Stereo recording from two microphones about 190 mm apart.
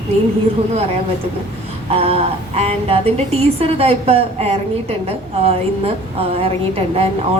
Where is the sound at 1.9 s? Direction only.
30° right (ahead or behind).